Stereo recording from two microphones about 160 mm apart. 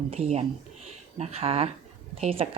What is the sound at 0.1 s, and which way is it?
A woman's voice, 40° right (ahead or behind).